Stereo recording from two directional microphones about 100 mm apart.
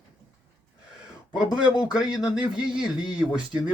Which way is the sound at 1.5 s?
10° right (ahead or behind).